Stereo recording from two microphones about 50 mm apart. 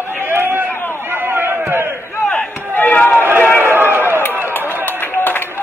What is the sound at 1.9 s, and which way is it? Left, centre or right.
Battle cry, left.